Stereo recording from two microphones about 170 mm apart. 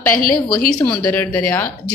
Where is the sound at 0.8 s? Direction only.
10° left (ahead or behind).